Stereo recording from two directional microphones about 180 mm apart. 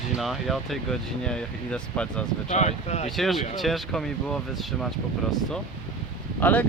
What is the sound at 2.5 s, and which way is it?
Speech, 40° left (ahead or behind).